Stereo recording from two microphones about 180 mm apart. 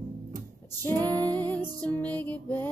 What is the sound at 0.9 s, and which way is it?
Female singing, 20° right (ahead or behind).